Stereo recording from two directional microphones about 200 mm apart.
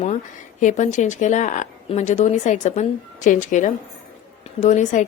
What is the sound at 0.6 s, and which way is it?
A woman's voice, 35° left (ahead or behind).